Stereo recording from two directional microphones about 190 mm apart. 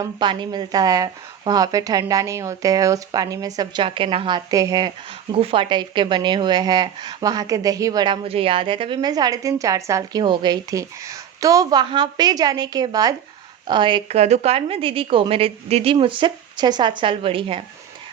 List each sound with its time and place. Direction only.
0.0 s speech: 25° right (ahead or behind)